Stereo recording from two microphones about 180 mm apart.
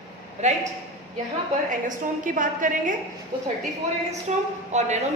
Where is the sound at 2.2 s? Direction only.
45° right (ahead or behind).